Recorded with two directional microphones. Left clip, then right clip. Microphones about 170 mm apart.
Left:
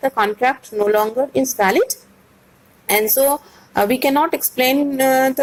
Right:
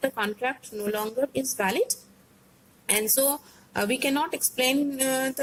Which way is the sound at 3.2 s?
20° left (ahead or behind).